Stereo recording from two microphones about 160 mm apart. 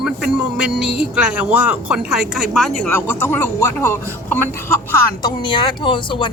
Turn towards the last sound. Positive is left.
turn(degrees=30)  # may be behind; listen again after turning